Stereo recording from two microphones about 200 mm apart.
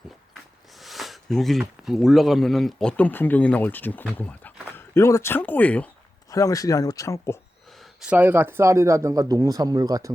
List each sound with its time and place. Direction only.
0.8 s speech: centre (ahead or behind); by 7.3 s 15° left (ahead or behind)
7.8 s speech: 5° right (ahead or behind)